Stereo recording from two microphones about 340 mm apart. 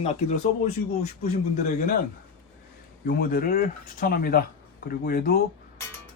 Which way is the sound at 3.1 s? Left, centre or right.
Left.